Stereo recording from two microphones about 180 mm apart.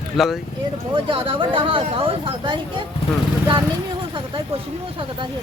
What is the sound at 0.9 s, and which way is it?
Speech, 30° right (ahead or behind).